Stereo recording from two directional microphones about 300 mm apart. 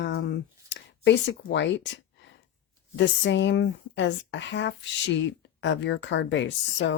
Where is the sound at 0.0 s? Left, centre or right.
Left.